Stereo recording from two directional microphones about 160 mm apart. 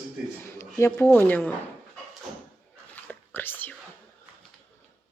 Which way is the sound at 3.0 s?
10° left (ahead or behind).